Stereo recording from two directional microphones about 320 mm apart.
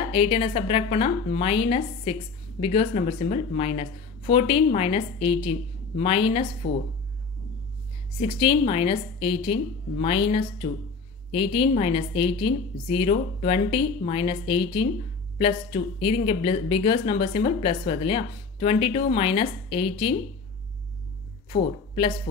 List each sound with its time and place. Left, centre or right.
0.1 s speech: centre
8.2 s speech: centre
21.5 s speech: centre